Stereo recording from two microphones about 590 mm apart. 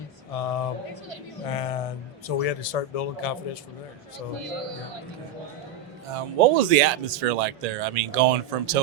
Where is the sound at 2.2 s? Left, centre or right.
Left.